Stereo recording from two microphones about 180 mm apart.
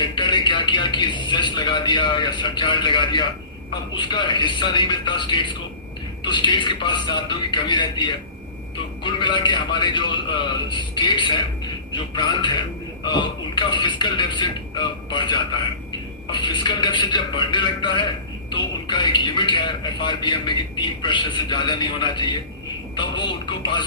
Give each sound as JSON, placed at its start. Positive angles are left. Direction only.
{"t": 0.0, "sound": "a man's voice", "side_deg": 25}